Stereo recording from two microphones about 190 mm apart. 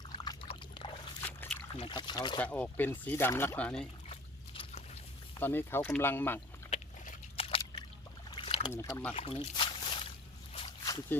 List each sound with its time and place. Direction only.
0.3 s pour: 25° left (ahead or behind)
1.2 s a sound: 10° left (ahead or behind)
1.7 s speech: 25° left (ahead or behind)
2.4 s speech: 5° left (ahead or behind)
4.1 s liquid: 30° left (ahead or behind)
5.4 s speech: 10° left (ahead or behind)
6.7 s a sound: 45° left (ahead or behind)
7.4 s a sound: 30° left (ahead or behind)
8.3 s boat: 30° left (ahead or behind)
8.7 s speech: 15° left (ahead or behind)
9.1 s a sound: 30° left (ahead or behind)
11.1 s speech: 10° left (ahead or behind)